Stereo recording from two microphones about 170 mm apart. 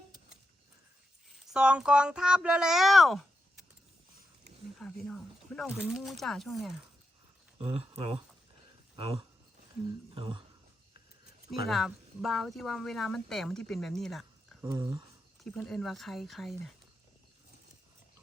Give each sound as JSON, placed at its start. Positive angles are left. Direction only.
{"t": 1.5, "sound": "speech", "side_deg": -5}
{"t": 4.8, "sound": "speech", "side_deg": 0}
{"t": 7.9, "sound": "speech", "side_deg": -35}
{"t": 11.6, "sound": "speech", "side_deg": 0}
{"t": 14.6, "sound": "speech", "side_deg": -20}
{"t": 15.4, "sound": "speech", "side_deg": 5}